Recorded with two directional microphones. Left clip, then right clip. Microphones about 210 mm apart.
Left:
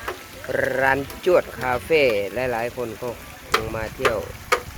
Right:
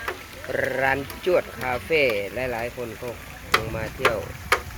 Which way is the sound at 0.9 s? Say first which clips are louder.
Left 3 dB; 15° left (ahead or behind).